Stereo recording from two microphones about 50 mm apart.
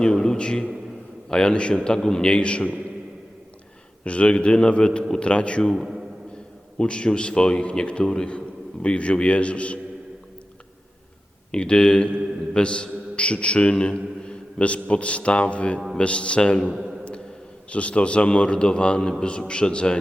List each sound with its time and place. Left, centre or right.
0.0 s a man's voice: centre
4.0 s a man's voice: left
5.7 s a man's voice: centre
6.7 s a man's voice: centre
11.5 s a man's voice: centre